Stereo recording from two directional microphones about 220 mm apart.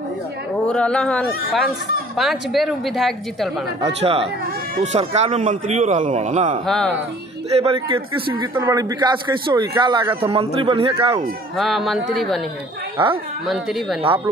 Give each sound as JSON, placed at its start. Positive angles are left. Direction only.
{"t": 0.7, "sound": "a woman's voice", "side_deg": 5}
{"t": 3.8, "sound": "a man's voice", "side_deg": -25}
{"t": 6.6, "sound": "a woman's voice", "side_deg": 0}
{"t": 7.5, "sound": "a man's voice", "side_deg": -25}
{"t": 11.5, "sound": "a woman's voice", "side_deg": 0}
{"t": 12.9, "sound": "speech", "side_deg": -25}
{"t": 13.5, "sound": "a woman's voice", "side_deg": 0}